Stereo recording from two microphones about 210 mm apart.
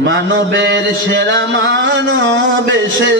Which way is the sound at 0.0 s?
60° right (ahead or behind).